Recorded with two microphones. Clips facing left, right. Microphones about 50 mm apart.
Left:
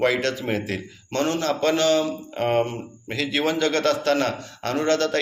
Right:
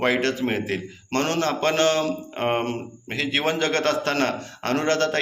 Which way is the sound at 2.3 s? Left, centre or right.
Right.